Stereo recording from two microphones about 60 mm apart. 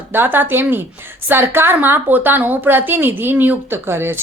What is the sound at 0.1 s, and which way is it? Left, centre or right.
A woman's voice, right.